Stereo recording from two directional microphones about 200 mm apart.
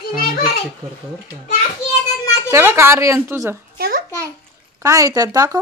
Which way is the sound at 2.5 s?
10° right (ahead or behind).